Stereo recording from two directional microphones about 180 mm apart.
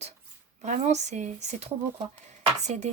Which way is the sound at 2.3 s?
40° right (ahead or behind).